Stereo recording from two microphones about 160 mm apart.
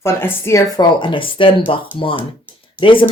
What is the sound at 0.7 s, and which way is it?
Speech, 30° left (ahead or behind).